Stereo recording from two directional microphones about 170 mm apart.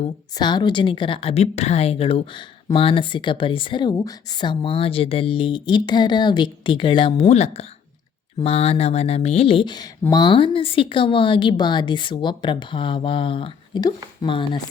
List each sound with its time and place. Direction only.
0.3 s a woman's voice: 25° left (ahead or behind)
7.3 s a woman's voice: 40° left (ahead or behind)